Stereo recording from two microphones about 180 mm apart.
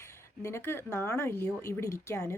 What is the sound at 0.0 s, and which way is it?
Speech, 15° left (ahead or behind).